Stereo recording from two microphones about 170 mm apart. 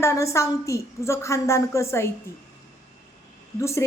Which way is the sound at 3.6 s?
15° left (ahead or behind).